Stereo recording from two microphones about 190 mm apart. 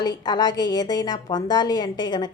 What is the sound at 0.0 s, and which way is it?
A woman's voice, 20° left (ahead or behind).